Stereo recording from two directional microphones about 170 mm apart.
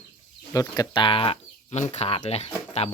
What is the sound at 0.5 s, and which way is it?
Speech, 20° left (ahead or behind).